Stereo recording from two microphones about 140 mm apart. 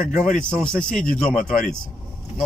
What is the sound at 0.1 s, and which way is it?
Speech, 65° left (ahead or behind).